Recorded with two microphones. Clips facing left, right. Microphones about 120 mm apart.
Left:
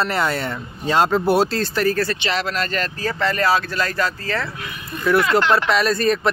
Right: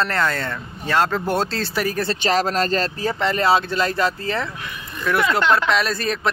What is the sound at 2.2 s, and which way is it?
Speech, 40° right (ahead or behind).